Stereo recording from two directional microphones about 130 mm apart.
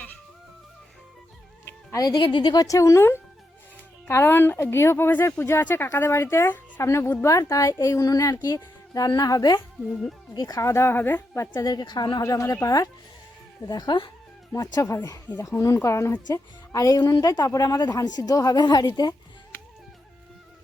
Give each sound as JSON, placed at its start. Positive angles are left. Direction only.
{"t": 1.9, "sound": "speech", "side_deg": 30}
{"t": 11.5, "sound": "speech", "side_deg": 30}